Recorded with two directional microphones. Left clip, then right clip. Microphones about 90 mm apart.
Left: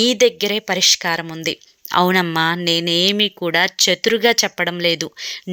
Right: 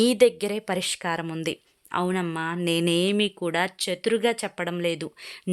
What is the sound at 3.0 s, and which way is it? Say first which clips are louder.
Speech: left 8 dB; 10° left (ahead or behind).